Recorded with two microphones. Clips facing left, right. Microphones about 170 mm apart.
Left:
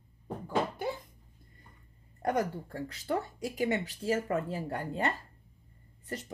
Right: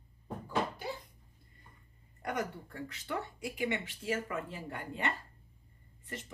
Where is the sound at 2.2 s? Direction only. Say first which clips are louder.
Left 6 dB; 35° left (ahead or behind).